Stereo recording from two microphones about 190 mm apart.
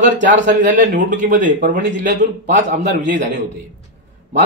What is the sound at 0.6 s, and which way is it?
Speech, 40° right (ahead or behind).